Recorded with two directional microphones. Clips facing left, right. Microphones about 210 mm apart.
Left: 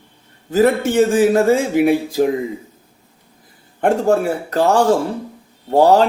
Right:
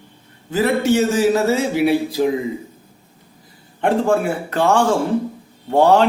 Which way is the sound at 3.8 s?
40° left (ahead or behind).